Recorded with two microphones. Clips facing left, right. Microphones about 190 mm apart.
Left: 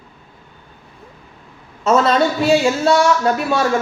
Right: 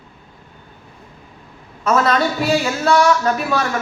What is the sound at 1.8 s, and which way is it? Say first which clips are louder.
A woman's voice: left 2 dB; 25° left (ahead or behind).